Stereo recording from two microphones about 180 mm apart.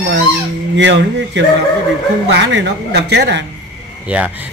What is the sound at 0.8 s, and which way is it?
Speech, 90° right.